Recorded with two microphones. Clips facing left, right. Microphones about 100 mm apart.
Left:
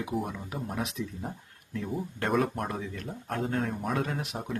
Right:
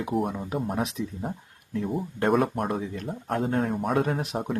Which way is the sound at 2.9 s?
35° right (ahead or behind).